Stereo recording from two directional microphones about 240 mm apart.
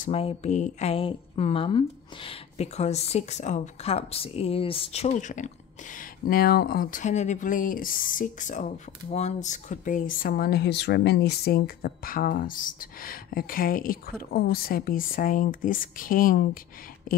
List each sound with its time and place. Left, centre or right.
0.0 s speech: left